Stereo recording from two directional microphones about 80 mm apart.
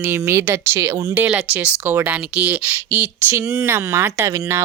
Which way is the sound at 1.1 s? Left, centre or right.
Right.